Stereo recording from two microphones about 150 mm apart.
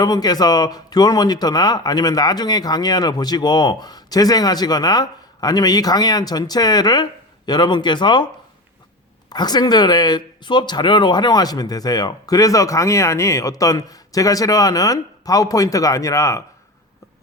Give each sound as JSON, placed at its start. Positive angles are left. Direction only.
{"t": 0.0, "sound": "speech", "side_deg": 25}
{"t": 9.3, "sound": "speech", "side_deg": 30}